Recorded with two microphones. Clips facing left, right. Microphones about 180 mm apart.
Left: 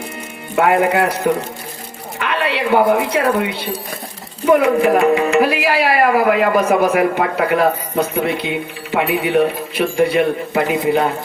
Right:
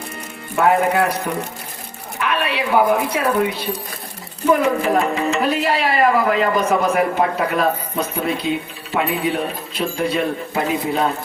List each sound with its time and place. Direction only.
0.5 s speech: 65° left (ahead or behind)
2.1 s speech: 70° left (ahead or behind)
4.8 s speech: 65° left (ahead or behind)